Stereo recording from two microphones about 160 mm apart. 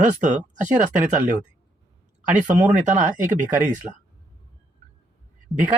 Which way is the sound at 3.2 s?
55° right (ahead or behind).